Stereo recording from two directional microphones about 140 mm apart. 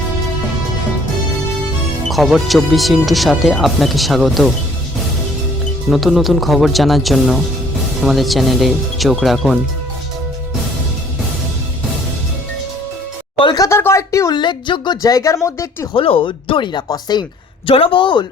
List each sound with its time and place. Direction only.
2.0 s speech: centre (ahead or behind)
5.9 s speech: centre (ahead or behind)
13.4 s a sound: 30° left (ahead or behind)
13.7 s speech: 20° left (ahead or behind)
16.0 s speech: 40° left (ahead or behind)